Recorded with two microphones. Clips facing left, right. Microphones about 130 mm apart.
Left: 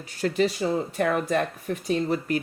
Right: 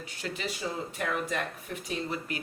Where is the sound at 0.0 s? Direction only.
40° left (ahead or behind).